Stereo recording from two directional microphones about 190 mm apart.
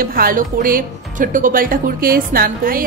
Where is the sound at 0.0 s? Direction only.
50° right (ahead or behind).